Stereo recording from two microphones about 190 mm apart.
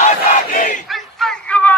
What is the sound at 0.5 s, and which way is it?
Battle cry, 40° left (ahead or behind).